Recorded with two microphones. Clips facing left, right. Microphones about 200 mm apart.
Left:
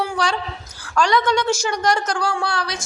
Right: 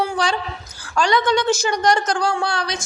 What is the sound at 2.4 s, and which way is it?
Speech, centre (ahead or behind).